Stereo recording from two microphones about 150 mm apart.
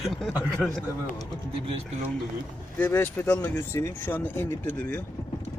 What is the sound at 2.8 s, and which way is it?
Speech, 15° left (ahead or behind).